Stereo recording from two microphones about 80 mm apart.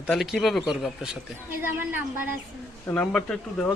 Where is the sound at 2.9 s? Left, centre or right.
Centre.